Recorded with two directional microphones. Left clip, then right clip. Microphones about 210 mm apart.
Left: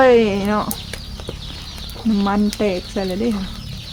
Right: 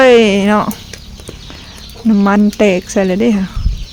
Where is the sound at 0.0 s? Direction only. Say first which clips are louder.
Right 6 dB; 40° right (ahead or behind).